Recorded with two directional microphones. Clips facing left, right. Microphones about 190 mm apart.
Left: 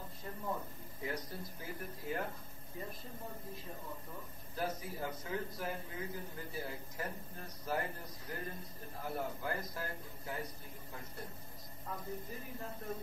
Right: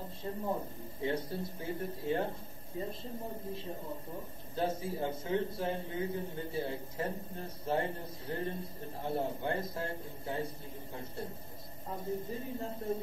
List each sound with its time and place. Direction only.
0.2 s a man's voice: 25° right (ahead or behind)